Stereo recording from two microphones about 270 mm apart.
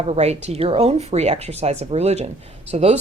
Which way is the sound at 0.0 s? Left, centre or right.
Right.